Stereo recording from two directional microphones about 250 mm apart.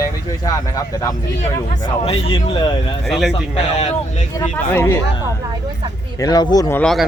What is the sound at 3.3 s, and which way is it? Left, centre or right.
Speech, left.